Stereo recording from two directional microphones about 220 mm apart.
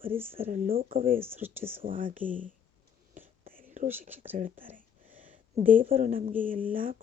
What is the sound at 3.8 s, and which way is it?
Speech, 35° right (ahead or behind).